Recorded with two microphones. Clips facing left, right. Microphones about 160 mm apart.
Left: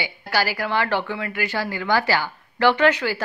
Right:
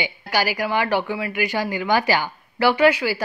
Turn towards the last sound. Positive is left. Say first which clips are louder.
# right 2 dB
turn(degrees=-10)  # may be behind; listen again after turning